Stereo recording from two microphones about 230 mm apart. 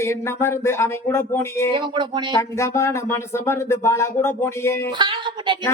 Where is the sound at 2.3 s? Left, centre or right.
Centre.